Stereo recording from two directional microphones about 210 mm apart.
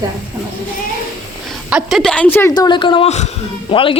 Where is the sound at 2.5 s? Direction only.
20° left (ahead or behind).